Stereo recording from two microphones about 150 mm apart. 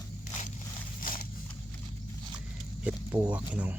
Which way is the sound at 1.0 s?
70° left (ahead or behind).